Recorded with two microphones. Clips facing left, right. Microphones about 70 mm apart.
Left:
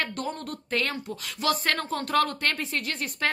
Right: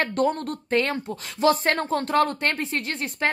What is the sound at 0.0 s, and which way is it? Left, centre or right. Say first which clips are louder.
Speech: right 8 dB; right.